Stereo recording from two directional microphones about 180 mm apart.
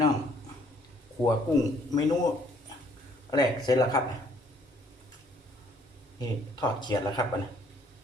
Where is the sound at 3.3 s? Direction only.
20° left (ahead or behind).